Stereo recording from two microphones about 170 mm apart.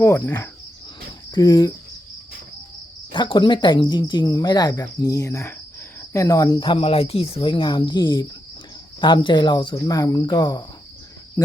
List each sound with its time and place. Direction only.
0.0 s cricket: 15° left (ahead or behind)
1.3 s speech: 25° left (ahead or behind)
3.1 s speech: 25° left (ahead or behind)